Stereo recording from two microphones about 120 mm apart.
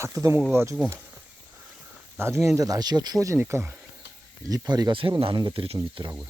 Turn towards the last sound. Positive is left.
turn(degrees=-45)  # may be behind; listen again after turning